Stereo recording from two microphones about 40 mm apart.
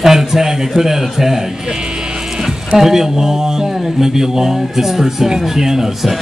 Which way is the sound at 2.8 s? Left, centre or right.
Centre.